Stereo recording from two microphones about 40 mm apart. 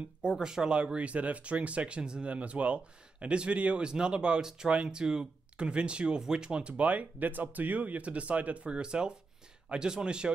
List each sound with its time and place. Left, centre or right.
0.3 s speech: centre; by 3.8 s right
3.8 s speech: right
6.8 s speech: right